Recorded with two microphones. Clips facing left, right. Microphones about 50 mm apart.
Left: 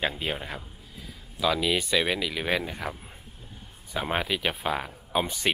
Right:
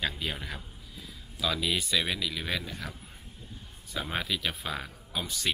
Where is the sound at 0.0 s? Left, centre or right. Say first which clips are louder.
Left 4 dB; left.